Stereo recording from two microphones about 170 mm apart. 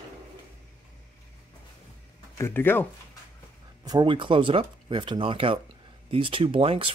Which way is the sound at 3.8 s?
25° right (ahead or behind).